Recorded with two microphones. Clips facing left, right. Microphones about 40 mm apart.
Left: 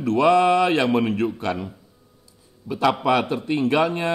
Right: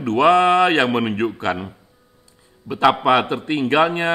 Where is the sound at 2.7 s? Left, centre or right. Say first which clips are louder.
Right 4 dB; right.